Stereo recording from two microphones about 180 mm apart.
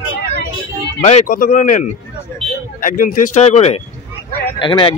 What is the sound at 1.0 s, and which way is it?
A man's voice, 45° left (ahead or behind).